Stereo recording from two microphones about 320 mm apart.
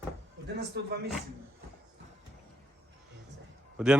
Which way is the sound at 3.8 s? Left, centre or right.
Centre.